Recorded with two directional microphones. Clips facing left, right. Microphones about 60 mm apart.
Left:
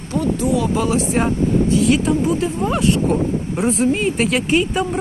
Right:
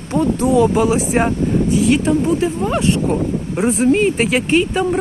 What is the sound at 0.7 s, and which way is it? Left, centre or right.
Speech, centre.